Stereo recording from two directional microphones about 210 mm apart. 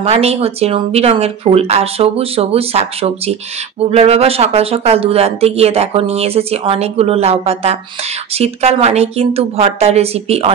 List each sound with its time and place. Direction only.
0.0 s a woman's voice: 30° right (ahead or behind)